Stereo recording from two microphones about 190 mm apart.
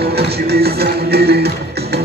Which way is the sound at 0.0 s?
55° right (ahead or behind).